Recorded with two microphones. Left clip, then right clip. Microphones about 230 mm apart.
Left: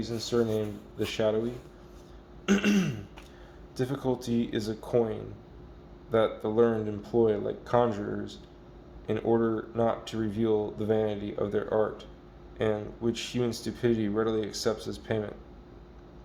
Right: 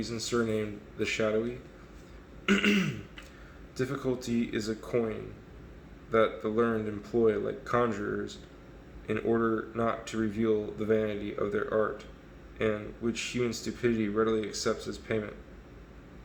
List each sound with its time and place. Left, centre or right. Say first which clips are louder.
0.0 s speech: left 2 dB; left
2.5 s speech: right 1 dB; left